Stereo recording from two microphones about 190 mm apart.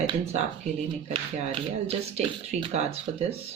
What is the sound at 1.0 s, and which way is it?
Speech, 30° right (ahead or behind).